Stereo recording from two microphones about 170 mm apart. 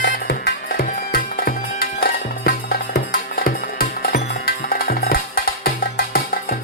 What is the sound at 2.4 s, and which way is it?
Music, 65° left (ahead or behind).